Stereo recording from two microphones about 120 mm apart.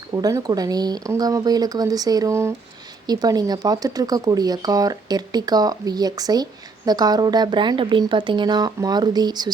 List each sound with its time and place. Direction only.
0.1 s speech: 30° right (ahead or behind)